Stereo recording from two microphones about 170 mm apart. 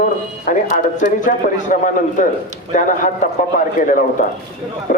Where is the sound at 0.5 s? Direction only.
50° left (ahead or behind).